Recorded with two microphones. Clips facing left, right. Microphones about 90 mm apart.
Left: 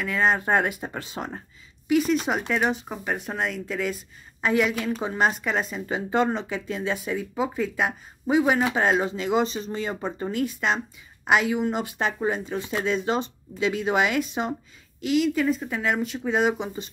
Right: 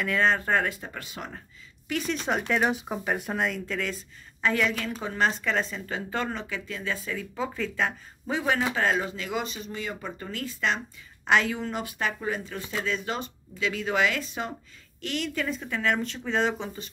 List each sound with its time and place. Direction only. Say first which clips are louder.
0.0 s speech: left 1 dB; 5° left (ahead or behind)
0.5 s speech: left 3 dB; 20° left (ahead or behind)
1.9 s speech: left 7 dB; 10° left (ahead or behind)
11.8 s speech: left 4 dB; 30° left (ahead or behind)
15.0 s speech: left 8 dB; 5° left (ahead or behind)